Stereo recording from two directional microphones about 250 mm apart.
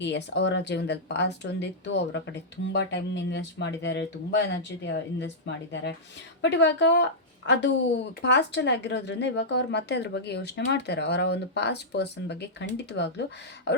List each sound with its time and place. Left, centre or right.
0.0 s speech: left